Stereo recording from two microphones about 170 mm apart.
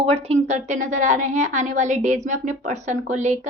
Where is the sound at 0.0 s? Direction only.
35° right (ahead or behind).